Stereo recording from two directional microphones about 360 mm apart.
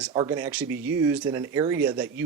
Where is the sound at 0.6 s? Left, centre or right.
Right.